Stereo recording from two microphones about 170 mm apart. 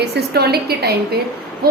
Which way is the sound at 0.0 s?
75° right (ahead or behind).